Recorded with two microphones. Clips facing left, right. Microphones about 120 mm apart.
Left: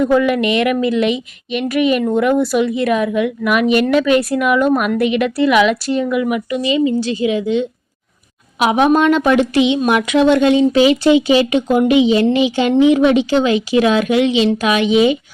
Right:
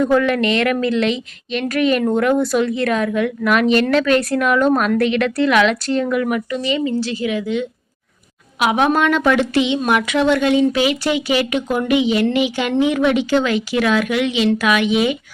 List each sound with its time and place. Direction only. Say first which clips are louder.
0.0 s a woman's voice: left 2 dB; 5° left (ahead or behind); by 15.2 s 25° left (ahead or behind)